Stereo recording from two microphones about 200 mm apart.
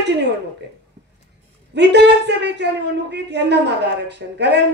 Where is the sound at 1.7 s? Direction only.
60° right (ahead or behind).